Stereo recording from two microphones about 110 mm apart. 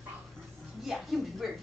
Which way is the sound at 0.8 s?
Centre (ahead or behind).